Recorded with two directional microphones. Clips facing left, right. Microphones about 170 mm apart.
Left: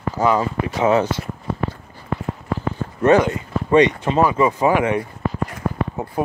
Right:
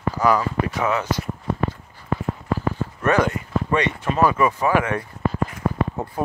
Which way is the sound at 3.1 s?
20° left (ahead or behind).